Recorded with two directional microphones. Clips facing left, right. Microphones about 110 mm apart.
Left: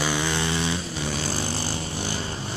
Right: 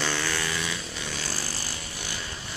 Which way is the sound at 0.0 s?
15° left (ahead or behind).